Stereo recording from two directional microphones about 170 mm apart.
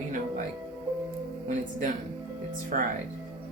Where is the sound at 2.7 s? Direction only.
50° right (ahead or behind).